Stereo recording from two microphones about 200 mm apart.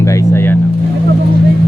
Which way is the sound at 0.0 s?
15° left (ahead or behind).